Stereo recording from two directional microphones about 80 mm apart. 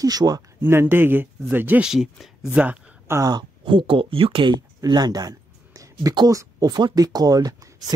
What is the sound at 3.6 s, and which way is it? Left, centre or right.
Speech, right.